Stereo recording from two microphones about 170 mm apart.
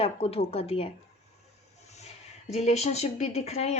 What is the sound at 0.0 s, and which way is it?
Speech, 35° left (ahead or behind).